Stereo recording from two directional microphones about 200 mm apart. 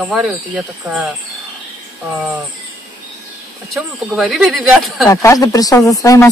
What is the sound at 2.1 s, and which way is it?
Speech, 5° right (ahead or behind).